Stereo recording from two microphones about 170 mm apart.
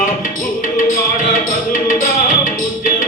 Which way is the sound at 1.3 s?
50° left (ahead or behind).